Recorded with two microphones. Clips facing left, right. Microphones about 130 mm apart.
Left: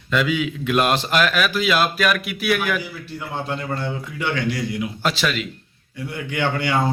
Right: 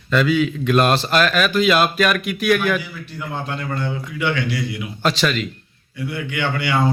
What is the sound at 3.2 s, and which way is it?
Speech, 25° left (ahead or behind).